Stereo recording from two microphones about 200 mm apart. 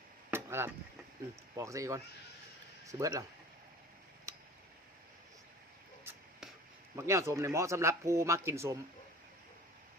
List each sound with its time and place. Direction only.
0.3 s chop: 10° right (ahead or behind)
1.5 s a man's voice: 15° right (ahead or behind)
6.9 s a man's voice: 15° right (ahead or behind)